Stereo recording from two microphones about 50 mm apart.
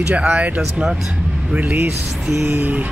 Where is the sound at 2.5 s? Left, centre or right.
Right.